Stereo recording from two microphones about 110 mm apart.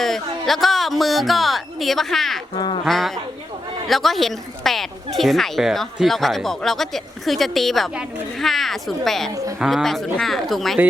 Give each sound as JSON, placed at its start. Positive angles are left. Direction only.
{"t": 0.0, "sound": "speech", "side_deg": 0}
{"t": 9.3, "sound": "a woman's voice", "side_deg": -30}
{"t": 9.6, "sound": "speech", "side_deg": 0}